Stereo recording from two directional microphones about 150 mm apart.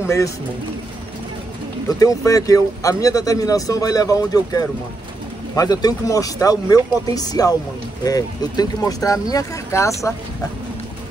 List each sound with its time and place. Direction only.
0.0 s a man's voice: 20° left (ahead or behind)
1.9 s speech: 25° left (ahead or behind)